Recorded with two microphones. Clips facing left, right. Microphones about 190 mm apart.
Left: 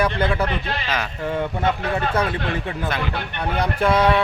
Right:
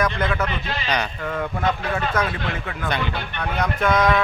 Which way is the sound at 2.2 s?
30° left (ahead or behind).